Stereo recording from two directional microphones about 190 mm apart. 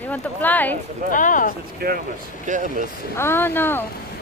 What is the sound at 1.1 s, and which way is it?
Speech, 45° left (ahead or behind).